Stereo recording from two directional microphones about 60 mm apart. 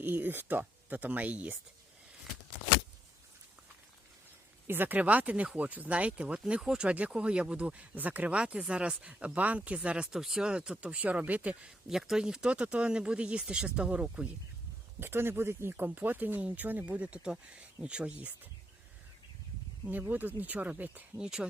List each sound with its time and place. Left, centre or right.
0.0 s speech: right
4.6 s speech: right
11.9 s speech: centre
15.0 s speech: right; by 18.3 s centre
19.9 s speech: right
21.2 s speech: centre